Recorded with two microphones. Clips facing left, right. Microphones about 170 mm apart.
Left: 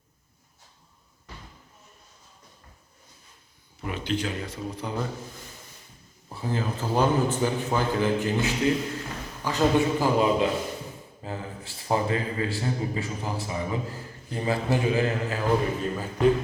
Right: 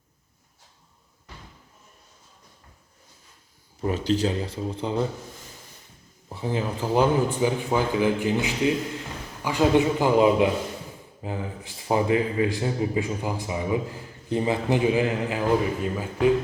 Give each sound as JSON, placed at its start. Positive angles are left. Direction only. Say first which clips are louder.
{"t": 3.8, "sound": "speech", "louder": "right 6 dB", "side_deg": -35}
{"t": 6.2, "sound": "a man's voice", "louder": "right 2 dB", "side_deg": -15}